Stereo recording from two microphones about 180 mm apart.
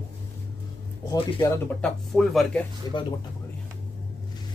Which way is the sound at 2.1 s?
Centre (ahead or behind).